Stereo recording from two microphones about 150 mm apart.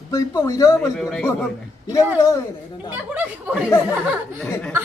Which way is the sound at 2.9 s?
10° right (ahead or behind).